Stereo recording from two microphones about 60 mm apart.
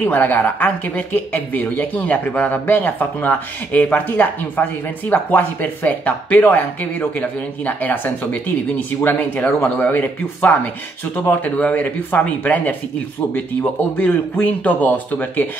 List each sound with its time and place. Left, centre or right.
0.0 s speech: left